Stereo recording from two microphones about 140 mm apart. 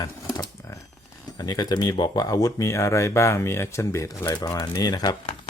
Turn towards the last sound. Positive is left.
turn(degrees=30)  # may be behind; listen again after turning